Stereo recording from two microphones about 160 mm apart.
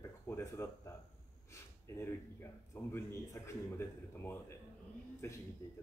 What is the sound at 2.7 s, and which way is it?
A man's voice, 15° left (ahead or behind).